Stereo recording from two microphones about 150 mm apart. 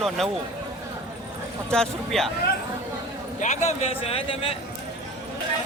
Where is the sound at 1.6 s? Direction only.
5° left (ahead or behind).